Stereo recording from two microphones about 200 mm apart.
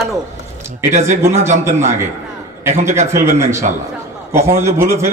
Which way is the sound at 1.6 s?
10° right (ahead or behind).